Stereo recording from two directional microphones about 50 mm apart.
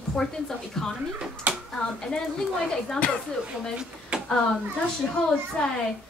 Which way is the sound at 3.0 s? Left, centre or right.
Left.